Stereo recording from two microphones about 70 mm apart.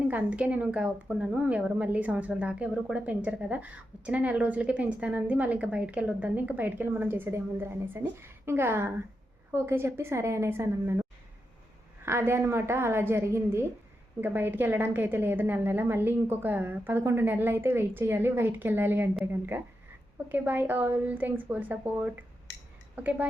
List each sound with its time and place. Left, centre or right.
0.1 s a woman's voice: right
7.3 s a woman's voice: right
12.0 s a woman's voice: right
14.2 s a woman's voice: right
17.0 s a woman's voice: right
17.2 s a woman's voice: right